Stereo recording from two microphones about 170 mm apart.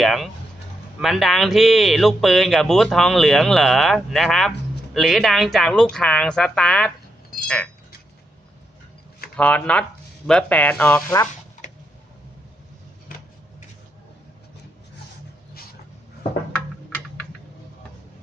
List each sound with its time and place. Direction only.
0.0 s a sound: centre (ahead or behind)
0.9 s speech: centre (ahead or behind)
9.3 s speech: 10° left (ahead or behind)